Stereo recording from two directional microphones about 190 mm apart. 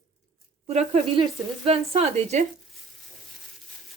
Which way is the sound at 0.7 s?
30° right (ahead or behind).